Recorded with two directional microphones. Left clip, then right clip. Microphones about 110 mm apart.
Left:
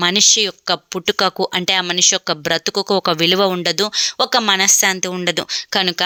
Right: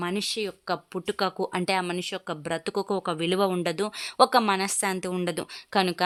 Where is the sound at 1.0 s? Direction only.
30° left (ahead or behind).